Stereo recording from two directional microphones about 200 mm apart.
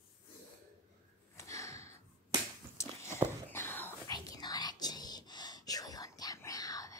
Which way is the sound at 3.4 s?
10° left (ahead or behind).